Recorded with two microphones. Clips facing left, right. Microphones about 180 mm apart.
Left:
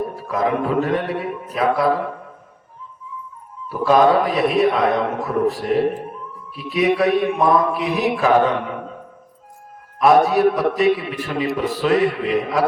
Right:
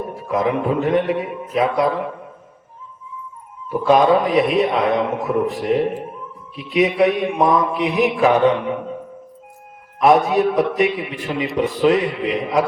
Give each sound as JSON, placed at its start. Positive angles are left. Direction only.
{"t": 0.3, "sound": "a man's voice", "side_deg": -20}
{"t": 3.7, "sound": "a man's voice", "side_deg": -20}
{"t": 10.0, "sound": "a man's voice", "side_deg": -20}